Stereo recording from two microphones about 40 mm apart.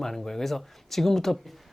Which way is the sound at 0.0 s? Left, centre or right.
Centre.